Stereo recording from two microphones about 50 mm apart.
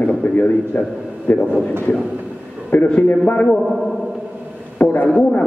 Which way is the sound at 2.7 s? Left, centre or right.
Left.